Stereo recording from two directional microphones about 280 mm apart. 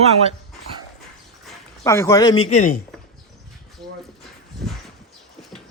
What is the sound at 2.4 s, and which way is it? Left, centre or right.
Speech, left.